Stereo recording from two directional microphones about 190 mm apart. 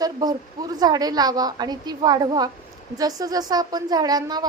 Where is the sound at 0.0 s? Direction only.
20° right (ahead or behind).